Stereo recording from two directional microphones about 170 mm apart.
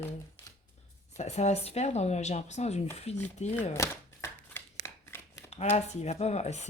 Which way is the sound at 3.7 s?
15° left (ahead or behind).